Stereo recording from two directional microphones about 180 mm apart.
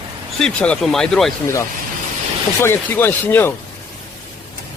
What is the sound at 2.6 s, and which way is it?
Speech, 10° left (ahead or behind).